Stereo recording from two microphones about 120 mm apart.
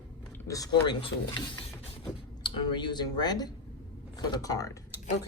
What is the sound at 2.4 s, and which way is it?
A woman's voice, 40° left (ahead or behind).